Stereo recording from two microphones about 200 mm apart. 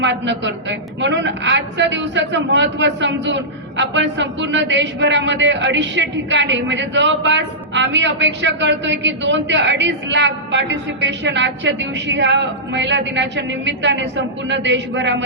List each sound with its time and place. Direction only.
0.0 s a woman's voice: 60° right (ahead or behind)